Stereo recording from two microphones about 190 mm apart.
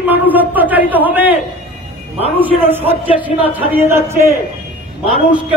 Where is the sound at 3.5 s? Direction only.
10° right (ahead or behind).